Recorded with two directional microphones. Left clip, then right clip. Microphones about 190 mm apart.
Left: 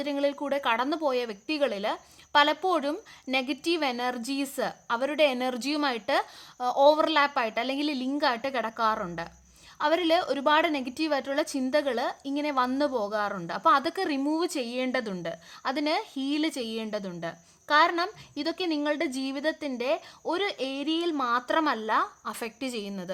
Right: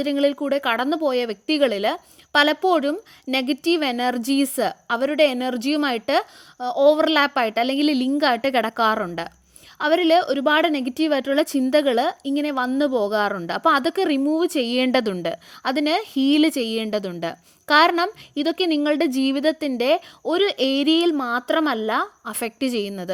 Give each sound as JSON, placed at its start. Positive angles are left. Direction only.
{"t": 0.0, "sound": "a woman's voice", "side_deg": -30}